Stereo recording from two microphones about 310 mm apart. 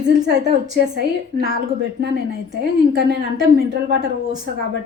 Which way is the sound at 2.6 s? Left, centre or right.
Right.